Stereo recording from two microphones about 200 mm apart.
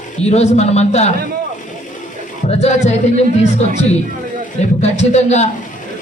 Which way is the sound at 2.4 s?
35° left (ahead or behind).